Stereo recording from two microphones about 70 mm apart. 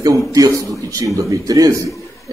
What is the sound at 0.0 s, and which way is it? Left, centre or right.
A man's voice, right.